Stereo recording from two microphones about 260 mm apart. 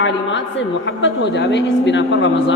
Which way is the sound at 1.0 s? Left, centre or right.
Left.